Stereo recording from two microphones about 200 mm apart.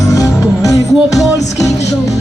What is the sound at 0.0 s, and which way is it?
Music, 15° left (ahead or behind).